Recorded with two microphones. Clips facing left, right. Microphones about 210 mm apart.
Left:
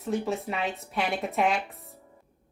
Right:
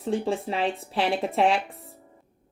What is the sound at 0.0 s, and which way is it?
A woman's voice, 30° right (ahead or behind).